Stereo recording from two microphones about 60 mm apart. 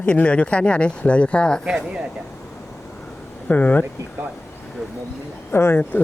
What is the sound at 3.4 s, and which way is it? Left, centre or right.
Speech, left.